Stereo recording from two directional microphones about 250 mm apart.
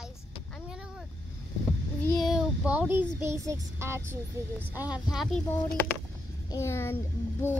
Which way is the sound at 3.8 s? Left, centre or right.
Centre.